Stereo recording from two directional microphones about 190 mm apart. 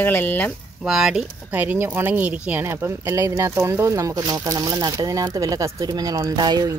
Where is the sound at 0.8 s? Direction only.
Centre (ahead or behind).